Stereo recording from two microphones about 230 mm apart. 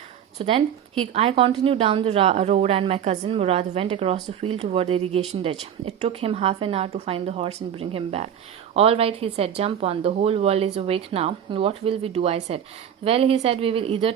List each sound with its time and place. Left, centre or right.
0.3 s a woman's voice: right